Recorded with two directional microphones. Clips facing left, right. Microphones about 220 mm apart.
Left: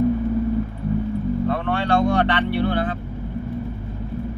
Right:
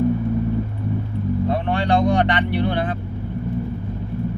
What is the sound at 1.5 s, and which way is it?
Vehicle, 15° right (ahead or behind).